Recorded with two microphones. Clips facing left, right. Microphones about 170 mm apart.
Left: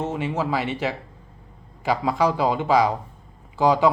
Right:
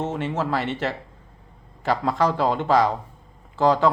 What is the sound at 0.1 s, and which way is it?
Speech, 5° left (ahead or behind).